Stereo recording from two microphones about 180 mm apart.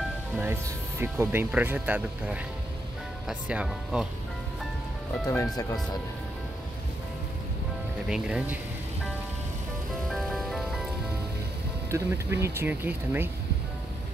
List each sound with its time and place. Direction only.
0.4 s speech: 10° right (ahead or behind)
5.2 s speech: 15° left (ahead or behind)
8.1 s speech: 5° right (ahead or behind)
10.1 s music: centre (ahead or behind)
11.9 s speech: 15° right (ahead or behind)